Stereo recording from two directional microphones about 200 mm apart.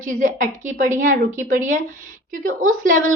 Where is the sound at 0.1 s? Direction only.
40° right (ahead or behind).